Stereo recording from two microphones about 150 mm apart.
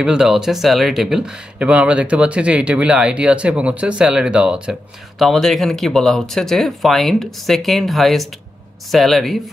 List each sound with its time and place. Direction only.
0.0 s speech: 5° right (ahead or behind)